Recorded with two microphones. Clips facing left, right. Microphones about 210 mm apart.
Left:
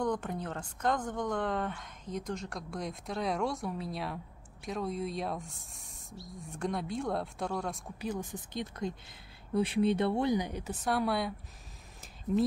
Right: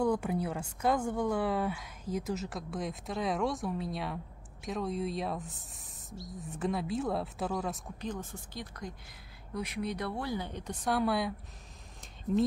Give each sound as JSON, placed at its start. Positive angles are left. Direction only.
{"t": 0.0, "sound": "speech", "side_deg": -10}
{"t": 8.0, "sound": "a woman's voice", "side_deg": 10}